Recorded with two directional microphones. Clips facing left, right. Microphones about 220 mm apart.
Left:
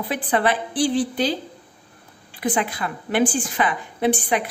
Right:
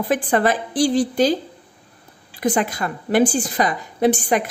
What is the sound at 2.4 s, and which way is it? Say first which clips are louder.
A woman's voice: right 3 dB; 45° right (ahead or behind).